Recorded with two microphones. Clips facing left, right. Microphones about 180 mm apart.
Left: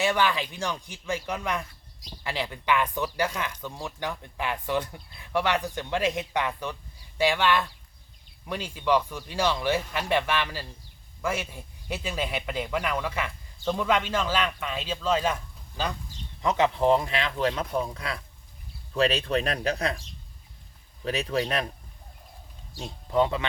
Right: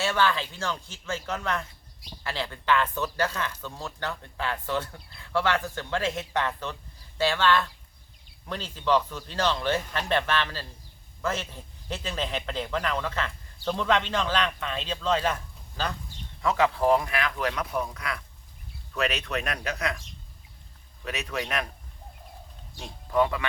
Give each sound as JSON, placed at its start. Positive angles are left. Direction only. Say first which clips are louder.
{"t": 0.0, "sound": "speech", "louder": "left 1 dB", "side_deg": 15}
{"t": 21.0, "sound": "speech", "louder": "left 5 dB", "side_deg": 30}
{"t": 22.8, "sound": "speech", "louder": "even", "side_deg": 25}